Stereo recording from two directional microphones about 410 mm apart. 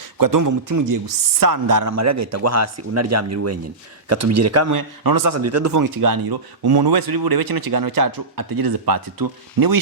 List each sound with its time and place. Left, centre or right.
0.2 s speech: right